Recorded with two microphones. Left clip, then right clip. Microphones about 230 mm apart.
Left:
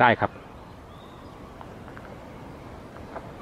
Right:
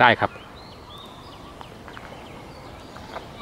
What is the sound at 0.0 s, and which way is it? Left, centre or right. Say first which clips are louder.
Speech: right 3 dB; centre.